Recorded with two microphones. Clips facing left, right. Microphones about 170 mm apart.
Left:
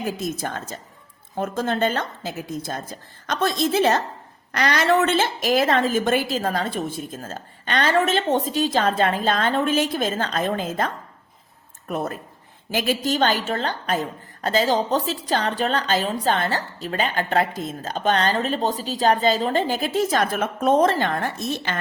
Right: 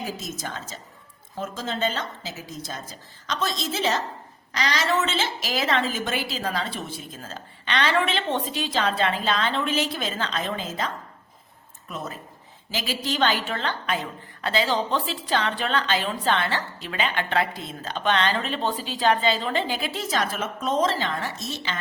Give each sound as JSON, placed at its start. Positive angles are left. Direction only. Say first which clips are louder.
{"t": 0.0, "sound": "a woman's voice", "louder": "left 6 dB", "side_deg": 55}